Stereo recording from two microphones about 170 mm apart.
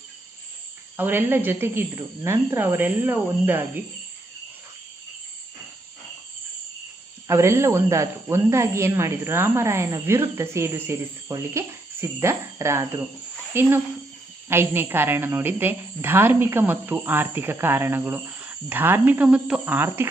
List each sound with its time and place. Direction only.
0.9 s speech: 10° right (ahead or behind)
7.3 s speech: 15° right (ahead or behind)